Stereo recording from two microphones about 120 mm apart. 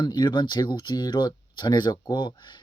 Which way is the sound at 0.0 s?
40° left (ahead or behind).